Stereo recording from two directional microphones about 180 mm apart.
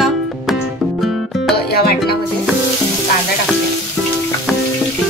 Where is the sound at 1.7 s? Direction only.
60° left (ahead or behind).